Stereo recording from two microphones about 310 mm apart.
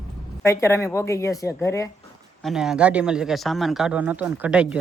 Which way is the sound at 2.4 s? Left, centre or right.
Centre.